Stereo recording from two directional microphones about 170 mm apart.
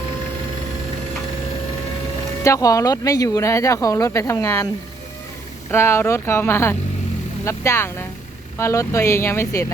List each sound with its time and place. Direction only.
2.4 s speech: 20° left (ahead or behind)
5.7 s speech: 15° left (ahead or behind)